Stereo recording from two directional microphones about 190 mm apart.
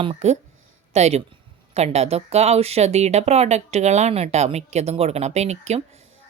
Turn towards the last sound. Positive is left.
turn(degrees=-35)  # may be behind; listen again after turning